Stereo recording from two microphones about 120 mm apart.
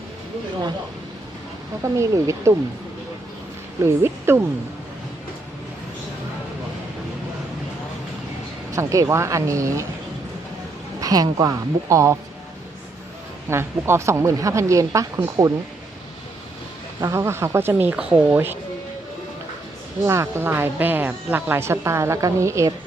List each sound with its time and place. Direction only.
2.0 s speech: 25° right (ahead or behind)
3.8 s speech: 20° right (ahead or behind)
8.7 s speech: 25° right (ahead or behind)
11.0 s speech: 30° right (ahead or behind)
13.5 s speech: 20° right (ahead or behind)
17.0 s speech: 25° right (ahead or behind)
20.1 s speech: 20° right (ahead or behind)